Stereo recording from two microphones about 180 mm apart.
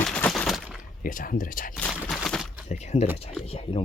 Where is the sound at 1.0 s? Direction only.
50° left (ahead or behind).